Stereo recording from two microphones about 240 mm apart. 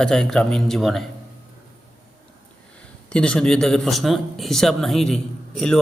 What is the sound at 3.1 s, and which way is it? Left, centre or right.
Speech, centre.